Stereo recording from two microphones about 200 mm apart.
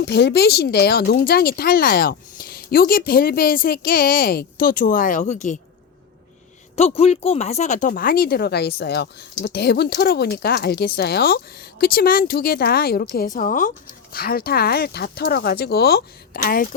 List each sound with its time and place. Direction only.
0.0 s speech: 55° left (ahead or behind); by 5.5 s 35° left (ahead or behind)
6.7 s speech: 30° left (ahead or behind); by 13.1 s 50° left (ahead or behind)
13.1 s speech: 40° left (ahead or behind)